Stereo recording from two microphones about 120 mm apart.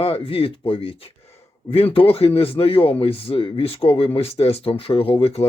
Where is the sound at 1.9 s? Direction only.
50° left (ahead or behind).